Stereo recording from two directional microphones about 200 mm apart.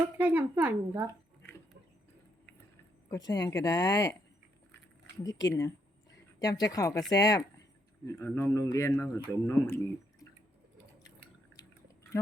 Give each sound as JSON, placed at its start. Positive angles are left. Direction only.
{"t": 0.2, "sound": "a woman's voice", "side_deg": -10}
{"t": 3.1, "sound": "speech", "side_deg": 20}
{"t": 5.2, "sound": "speech", "side_deg": 20}
{"t": 5.5, "sound": "a sound", "side_deg": 20}
{"t": 7.1, "sound": "speech", "side_deg": 20}